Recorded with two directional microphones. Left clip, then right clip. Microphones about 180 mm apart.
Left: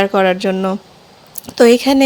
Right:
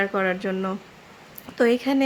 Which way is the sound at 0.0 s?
40° left (ahead or behind).